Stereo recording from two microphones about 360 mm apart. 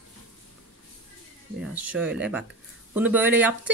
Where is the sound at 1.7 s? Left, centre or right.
Centre.